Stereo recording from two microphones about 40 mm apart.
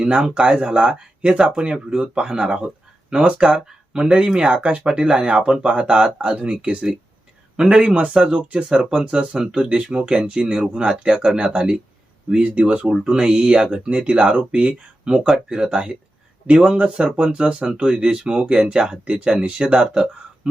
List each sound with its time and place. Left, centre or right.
0.0 s speech: right
1.3 s speech: right
7.5 s speech: centre; by 12.8 s right
12.8 s speech: right
15.7 s speech: right
17.0 s speech: right
19.4 s speech: right